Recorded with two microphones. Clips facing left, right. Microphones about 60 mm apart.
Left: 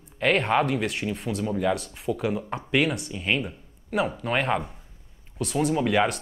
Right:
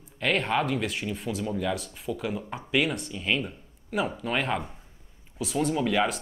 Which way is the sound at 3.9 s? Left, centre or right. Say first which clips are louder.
Left 3 dB; centre.